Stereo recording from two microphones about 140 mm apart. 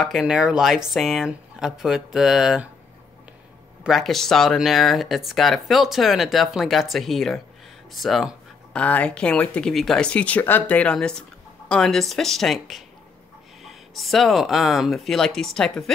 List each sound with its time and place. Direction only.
0.0 s speech: centre (ahead or behind)
3.8 s speech: centre (ahead or behind)